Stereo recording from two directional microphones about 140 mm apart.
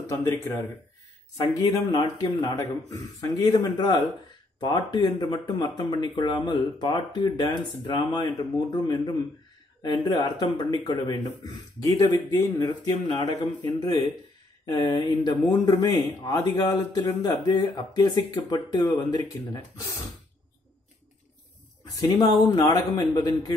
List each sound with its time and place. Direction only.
0.0 s speech: 20° left (ahead or behind)
22.2 s speech: 25° left (ahead or behind)